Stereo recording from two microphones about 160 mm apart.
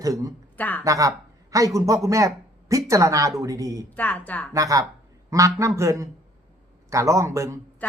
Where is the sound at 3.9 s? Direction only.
10° left (ahead or behind).